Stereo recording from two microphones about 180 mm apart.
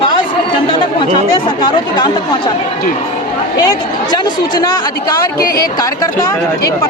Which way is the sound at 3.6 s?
20° left (ahead or behind).